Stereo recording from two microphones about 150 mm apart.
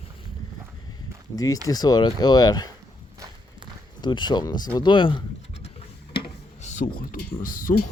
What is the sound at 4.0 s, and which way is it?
Speech, 30° left (ahead or behind).